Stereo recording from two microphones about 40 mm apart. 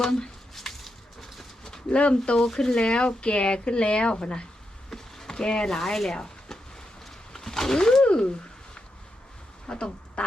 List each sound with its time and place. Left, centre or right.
0.0 s a sound: centre
1.9 s speech: left
2.3 s speech: centre
4.9 s speech: centre
6.1 s a sound: centre
9.6 s speech: left